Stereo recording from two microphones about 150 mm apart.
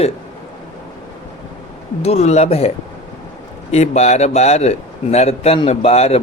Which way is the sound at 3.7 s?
50° left (ahead or behind).